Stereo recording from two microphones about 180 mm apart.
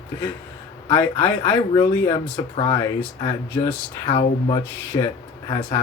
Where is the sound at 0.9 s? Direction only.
25° left (ahead or behind).